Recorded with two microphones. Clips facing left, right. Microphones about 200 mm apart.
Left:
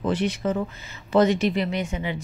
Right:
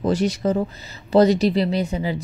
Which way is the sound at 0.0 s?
40° right (ahead or behind).